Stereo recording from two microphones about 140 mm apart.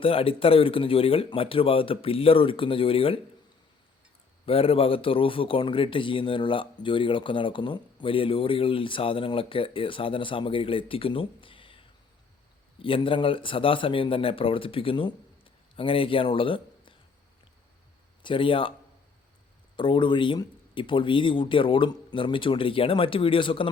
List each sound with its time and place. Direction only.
0.0 s speech: 40° left (ahead or behind)
4.4 s speech: 45° left (ahead or behind)
18.2 s speech: 35° left (ahead or behind)
19.7 s speech: 35° left (ahead or behind)